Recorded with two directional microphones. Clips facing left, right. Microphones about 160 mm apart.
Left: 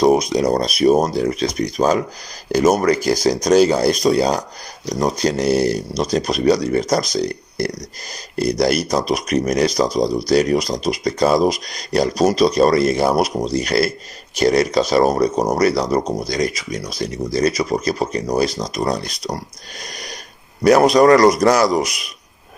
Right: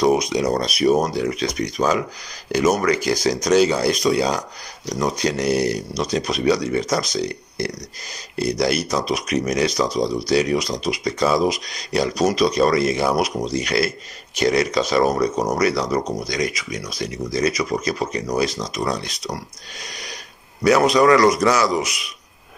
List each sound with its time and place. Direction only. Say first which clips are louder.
0.0 s speech: left 3 dB; 35° left (ahead or behind)
19.8 s a sound: left 3 dB; 45° left (ahead or behind)
20.6 s speech: left 4 dB; 40° left (ahead or behind)